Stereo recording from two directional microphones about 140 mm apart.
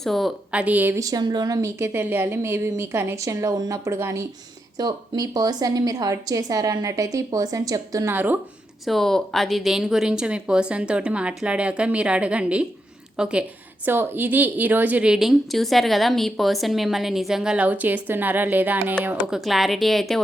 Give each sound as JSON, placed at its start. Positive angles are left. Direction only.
{"t": 0.0, "sound": "a woman's voice", "side_deg": 0}
{"t": 1.0, "sound": "a woman's voice", "side_deg": -30}
{"t": 8.1, "sound": "a woman's voice", "side_deg": -15}
{"t": 8.8, "sound": "a woman's voice", "side_deg": 0}